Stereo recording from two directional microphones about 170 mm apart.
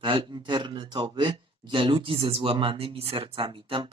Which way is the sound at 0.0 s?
30° right (ahead or behind).